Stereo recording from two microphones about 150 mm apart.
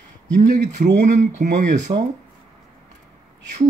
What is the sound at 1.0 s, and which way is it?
Speech, 55° right (ahead or behind).